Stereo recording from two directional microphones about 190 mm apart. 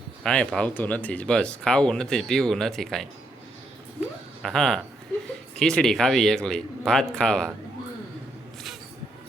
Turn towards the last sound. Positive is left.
turn(degrees=5)  # may be behind; listen again after turning